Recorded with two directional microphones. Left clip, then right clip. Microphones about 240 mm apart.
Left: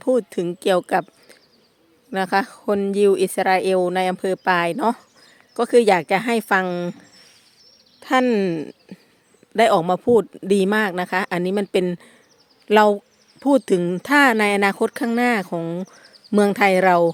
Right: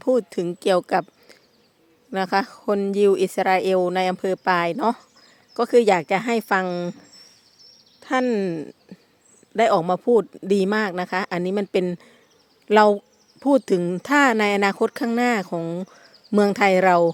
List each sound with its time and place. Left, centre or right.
0.0 s speech: centre
7.9 s speech: centre